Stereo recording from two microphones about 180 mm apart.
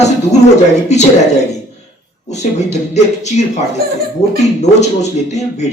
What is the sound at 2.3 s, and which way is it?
Speech, 40° left (ahead or behind).